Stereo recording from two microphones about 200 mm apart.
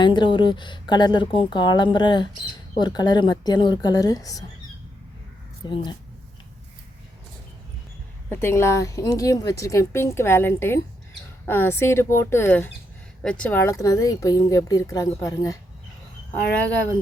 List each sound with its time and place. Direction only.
0.0 s speech: 25° left (ahead or behind)
5.6 s speech: 25° left (ahead or behind)
8.3 s speech: 10° left (ahead or behind)